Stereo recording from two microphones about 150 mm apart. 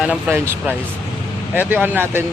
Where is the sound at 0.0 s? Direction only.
10° right (ahead or behind).